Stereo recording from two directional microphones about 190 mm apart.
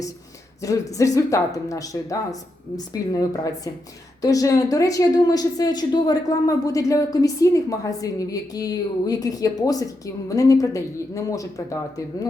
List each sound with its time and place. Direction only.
0.6 s a woman's voice: 15° left (ahead or behind)